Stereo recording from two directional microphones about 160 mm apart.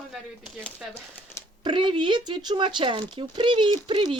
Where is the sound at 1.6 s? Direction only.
30° right (ahead or behind).